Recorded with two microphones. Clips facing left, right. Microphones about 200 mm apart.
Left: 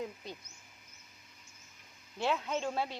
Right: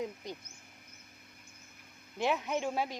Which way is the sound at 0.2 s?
15° right (ahead or behind).